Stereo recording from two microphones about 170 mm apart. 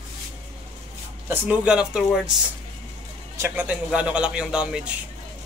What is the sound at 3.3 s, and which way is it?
A man's voice, 15° right (ahead or behind).